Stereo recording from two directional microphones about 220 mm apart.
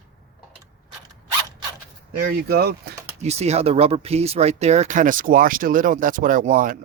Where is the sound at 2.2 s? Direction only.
45° right (ahead or behind).